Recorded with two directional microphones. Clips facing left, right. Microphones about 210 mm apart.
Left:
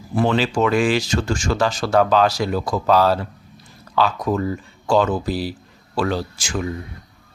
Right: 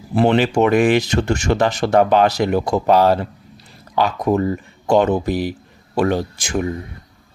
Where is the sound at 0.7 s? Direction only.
60° right (ahead or behind).